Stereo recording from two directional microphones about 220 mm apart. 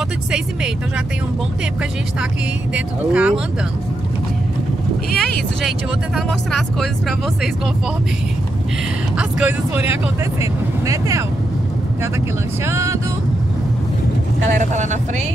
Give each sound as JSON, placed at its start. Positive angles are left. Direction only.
{"t": 2.7, "sound": "speech", "side_deg": -5}
{"t": 5.1, "sound": "speech", "side_deg": 0}
{"t": 9.1, "sound": "speech", "side_deg": -5}
{"t": 12.6, "sound": "speech", "side_deg": -15}
{"t": 14.6, "sound": "speech", "side_deg": -35}